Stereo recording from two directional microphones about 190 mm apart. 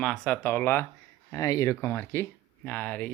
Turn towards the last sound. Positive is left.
turn(degrees=10)  # may be behind; listen again after turning